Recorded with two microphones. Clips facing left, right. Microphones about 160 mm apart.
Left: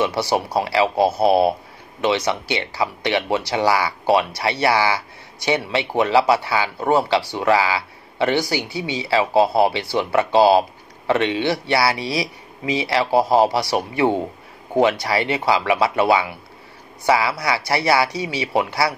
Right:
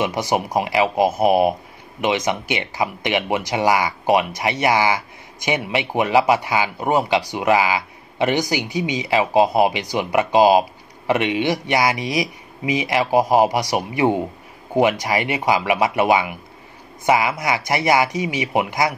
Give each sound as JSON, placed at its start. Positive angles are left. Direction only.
{"t": 0.0, "sound": "speech", "side_deg": -15}